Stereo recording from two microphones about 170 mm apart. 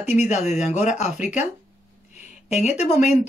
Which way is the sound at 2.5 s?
45° left (ahead or behind).